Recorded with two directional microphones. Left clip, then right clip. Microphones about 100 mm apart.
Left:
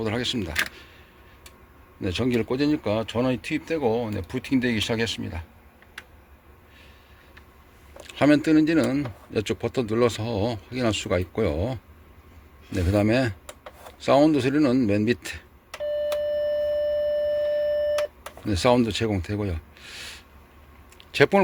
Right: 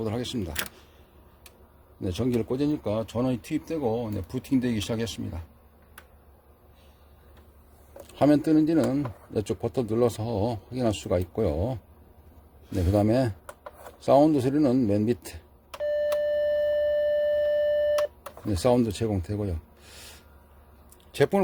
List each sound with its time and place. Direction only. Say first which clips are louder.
0.0 s speech: left 4 dB; 20° right (ahead or behind)
2.0 s speech: left 3 dB; 20° right (ahead or behind)
7.9 s speech: left 2 dB; 25° right (ahead or behind)
12.7 s speech: left 1 dB; 30° right (ahead or behind)
15.8 s doorbell: even; 5° left (ahead or behind)
18.4 s speech: left 3 dB; 25° right (ahead or behind)